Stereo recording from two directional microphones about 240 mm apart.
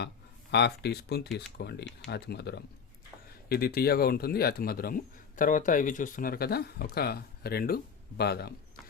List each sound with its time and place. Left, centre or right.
0.5 s speech: left